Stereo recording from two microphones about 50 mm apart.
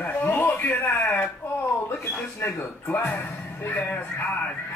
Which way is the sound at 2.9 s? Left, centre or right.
Left.